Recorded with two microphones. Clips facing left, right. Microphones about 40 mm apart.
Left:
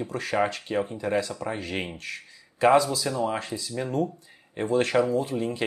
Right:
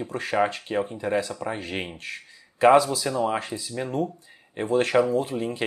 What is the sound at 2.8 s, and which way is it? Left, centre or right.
Speech, right.